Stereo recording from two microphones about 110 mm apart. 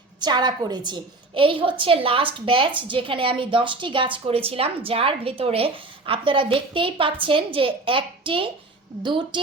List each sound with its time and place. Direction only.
0.2 s a woman's voice: 40° right (ahead or behind)